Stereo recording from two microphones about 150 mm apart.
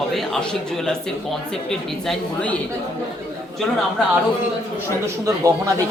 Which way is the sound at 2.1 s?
10° left (ahead or behind).